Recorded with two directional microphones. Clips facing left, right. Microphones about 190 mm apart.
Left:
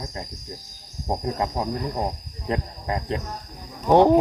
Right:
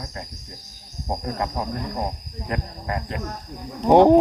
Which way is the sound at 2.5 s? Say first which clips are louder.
Left 2 dB; 25° left (ahead or behind).